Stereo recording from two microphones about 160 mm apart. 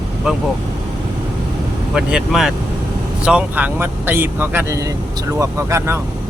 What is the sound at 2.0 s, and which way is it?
Speech, 5° right (ahead or behind).